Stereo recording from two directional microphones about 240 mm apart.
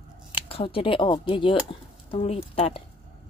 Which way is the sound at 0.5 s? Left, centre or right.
Left.